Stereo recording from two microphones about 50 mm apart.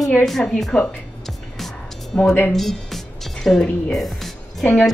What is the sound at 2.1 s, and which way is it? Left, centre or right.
Speech, left.